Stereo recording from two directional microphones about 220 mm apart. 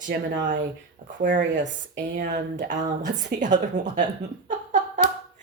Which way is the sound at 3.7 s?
35° right (ahead or behind).